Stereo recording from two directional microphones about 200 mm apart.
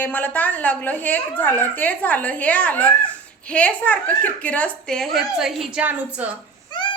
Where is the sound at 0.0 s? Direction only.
10° left (ahead or behind).